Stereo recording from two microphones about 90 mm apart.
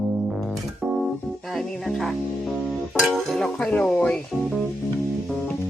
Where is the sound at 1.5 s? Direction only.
Centre (ahead or behind).